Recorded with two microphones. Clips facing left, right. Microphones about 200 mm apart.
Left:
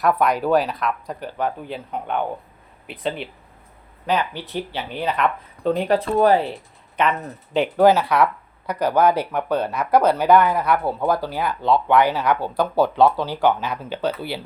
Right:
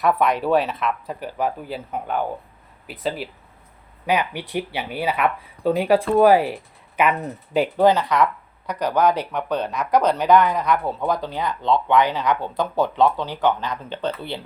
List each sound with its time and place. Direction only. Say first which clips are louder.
0.0 s speech: even; centre (ahead or behind)